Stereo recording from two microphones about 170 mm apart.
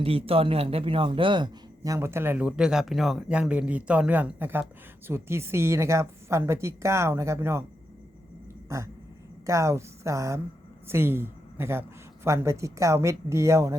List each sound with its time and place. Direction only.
0.0 s a man's voice: 35° right (ahead or behind); by 7.6 s 15° right (ahead or behind)
8.7 s a man's voice: 15° right (ahead or behind)